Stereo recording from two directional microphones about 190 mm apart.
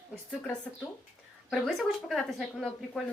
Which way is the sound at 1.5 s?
Centre (ahead or behind).